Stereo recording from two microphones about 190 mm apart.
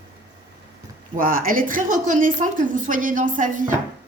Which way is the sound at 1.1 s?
45° right (ahead or behind).